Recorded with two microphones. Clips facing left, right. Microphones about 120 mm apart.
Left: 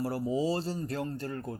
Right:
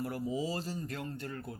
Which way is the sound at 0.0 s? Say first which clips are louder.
Left 5 dB; 35° left (ahead or behind).